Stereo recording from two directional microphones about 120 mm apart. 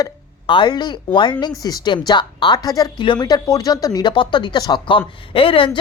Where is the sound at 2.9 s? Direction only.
40° left (ahead or behind).